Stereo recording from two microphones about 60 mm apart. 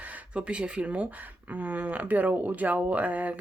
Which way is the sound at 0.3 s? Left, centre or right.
Centre.